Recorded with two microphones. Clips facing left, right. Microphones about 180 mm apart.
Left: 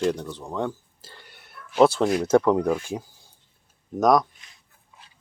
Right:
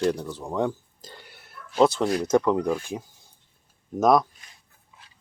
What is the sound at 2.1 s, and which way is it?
Speech, 10° left (ahead or behind).